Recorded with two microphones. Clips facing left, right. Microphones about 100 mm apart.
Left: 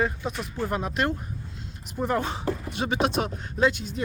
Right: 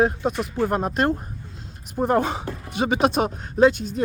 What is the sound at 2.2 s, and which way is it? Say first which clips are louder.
Speech: right 1 dB; 55° right (ahead or behind).